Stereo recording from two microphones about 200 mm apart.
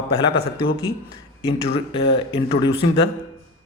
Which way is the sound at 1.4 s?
30° left (ahead or behind).